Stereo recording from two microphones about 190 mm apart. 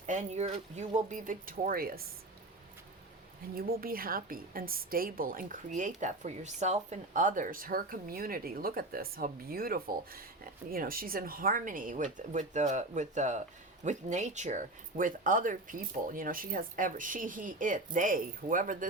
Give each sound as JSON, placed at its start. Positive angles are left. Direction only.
{"t": 0.0, "sound": "speech", "side_deg": -40}
{"t": 3.5, "sound": "a woman's voice", "side_deg": -50}